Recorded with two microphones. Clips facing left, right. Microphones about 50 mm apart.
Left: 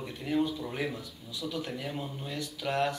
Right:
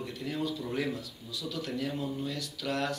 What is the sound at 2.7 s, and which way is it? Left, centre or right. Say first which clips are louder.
Speech: left 3 dB; left.